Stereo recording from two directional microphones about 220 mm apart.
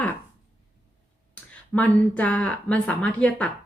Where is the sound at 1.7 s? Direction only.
5° left (ahead or behind).